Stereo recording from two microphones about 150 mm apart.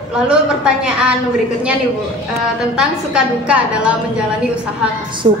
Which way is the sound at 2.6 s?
5° right (ahead or behind).